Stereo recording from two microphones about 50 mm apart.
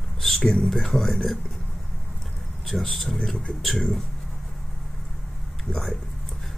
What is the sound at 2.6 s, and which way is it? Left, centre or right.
Speech, centre.